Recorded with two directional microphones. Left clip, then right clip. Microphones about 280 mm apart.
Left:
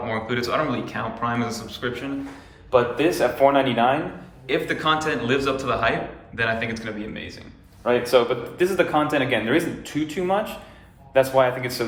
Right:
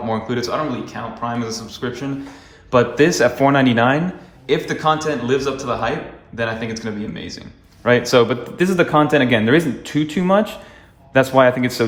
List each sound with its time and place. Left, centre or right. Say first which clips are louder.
0.1 s speech: right 3 dB; centre
2.6 s speech: right 5 dB; right
4.4 s speech: right 4 dB; centre
8.0 s speech: right 4 dB; right